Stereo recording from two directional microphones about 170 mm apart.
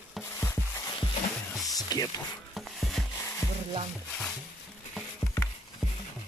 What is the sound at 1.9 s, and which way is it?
Speech, 20° left (ahead or behind).